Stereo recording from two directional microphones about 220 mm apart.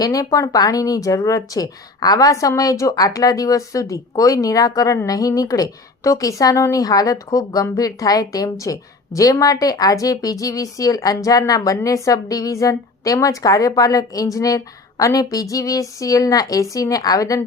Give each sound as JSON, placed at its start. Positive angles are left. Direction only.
{"t": 0.0, "sound": "speech", "side_deg": 15}